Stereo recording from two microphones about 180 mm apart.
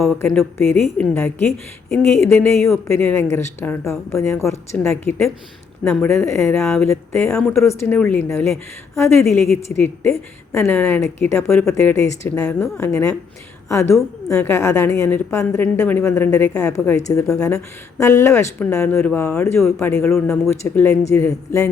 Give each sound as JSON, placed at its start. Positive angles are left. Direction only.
{"t": 0.2, "sound": "a woman's voice", "side_deg": 10}
{"t": 6.8, "sound": "a woman's voice", "side_deg": 15}
{"t": 7.3, "sound": "speech", "side_deg": 5}
{"t": 7.6, "sound": "a woman's voice", "side_deg": 15}
{"t": 9.7, "sound": "a woman's voice", "side_deg": 10}